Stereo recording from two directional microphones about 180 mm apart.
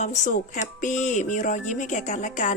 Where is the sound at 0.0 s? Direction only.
40° left (ahead or behind).